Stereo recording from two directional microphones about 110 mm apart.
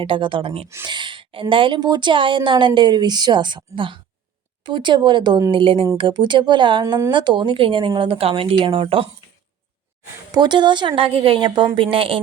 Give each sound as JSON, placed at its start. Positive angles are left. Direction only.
{"t": 0.0, "sound": "a woman's voice", "side_deg": -50}
{"t": 0.9, "sound": "a woman's voice", "side_deg": -45}
{"t": 10.3, "sound": "a woman's voice", "side_deg": -40}